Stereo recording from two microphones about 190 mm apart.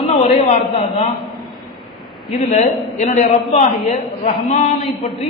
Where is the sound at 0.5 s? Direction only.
35° left (ahead or behind).